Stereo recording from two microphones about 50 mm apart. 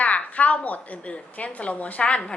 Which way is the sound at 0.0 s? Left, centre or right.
Left.